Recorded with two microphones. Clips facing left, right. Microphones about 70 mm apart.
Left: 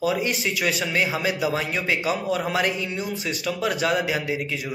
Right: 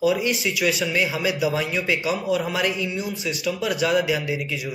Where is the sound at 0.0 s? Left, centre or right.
Left.